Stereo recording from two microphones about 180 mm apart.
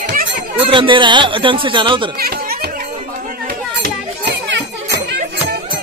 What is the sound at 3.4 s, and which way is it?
Children playing, 70° right (ahead or behind).